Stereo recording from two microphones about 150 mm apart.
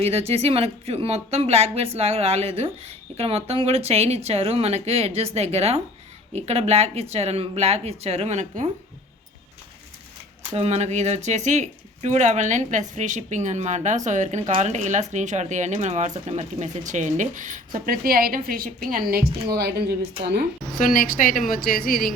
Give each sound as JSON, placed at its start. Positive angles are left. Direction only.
{"t": 0.0, "sound": "speech", "side_deg": -40}
{"t": 10.5, "sound": "speech", "side_deg": -45}
{"t": 17.7, "sound": "a woman's voice", "side_deg": -75}
{"t": 19.5, "sound": "speech", "side_deg": -90}
{"t": 20.7, "sound": "a woman's voice", "side_deg": 65}